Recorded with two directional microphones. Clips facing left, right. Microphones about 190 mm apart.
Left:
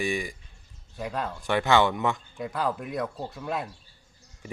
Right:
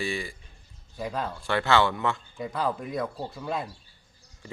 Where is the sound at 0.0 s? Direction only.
15° left (ahead or behind).